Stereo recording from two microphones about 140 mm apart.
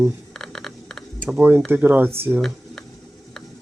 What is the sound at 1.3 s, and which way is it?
Speech, 15° right (ahead or behind).